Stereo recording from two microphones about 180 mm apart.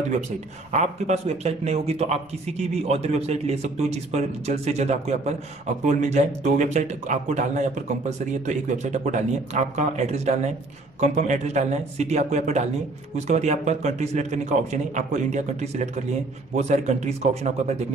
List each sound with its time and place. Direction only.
0.7 s a man's voice: 40° right (ahead or behind)